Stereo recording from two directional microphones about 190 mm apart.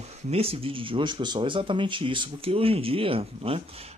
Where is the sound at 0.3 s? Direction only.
30° right (ahead or behind).